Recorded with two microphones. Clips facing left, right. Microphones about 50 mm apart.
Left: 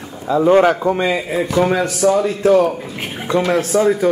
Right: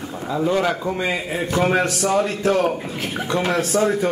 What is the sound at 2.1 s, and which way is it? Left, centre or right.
Speech, right.